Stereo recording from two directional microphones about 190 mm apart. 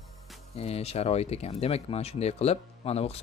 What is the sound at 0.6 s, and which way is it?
Speech, 35° left (ahead or behind).